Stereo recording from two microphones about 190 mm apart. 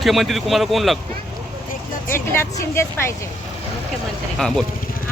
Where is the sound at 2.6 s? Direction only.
15° left (ahead or behind).